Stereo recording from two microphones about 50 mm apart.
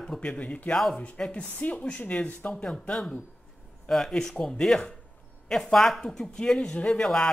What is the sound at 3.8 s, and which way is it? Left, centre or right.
Speech, centre.